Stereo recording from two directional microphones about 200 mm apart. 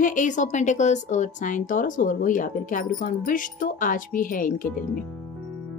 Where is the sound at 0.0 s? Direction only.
40° left (ahead or behind).